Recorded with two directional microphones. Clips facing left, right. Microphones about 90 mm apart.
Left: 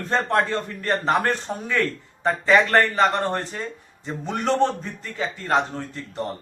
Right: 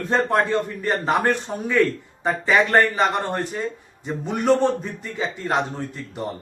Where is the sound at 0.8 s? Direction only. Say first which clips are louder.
Left 2 dB; 15° right (ahead or behind).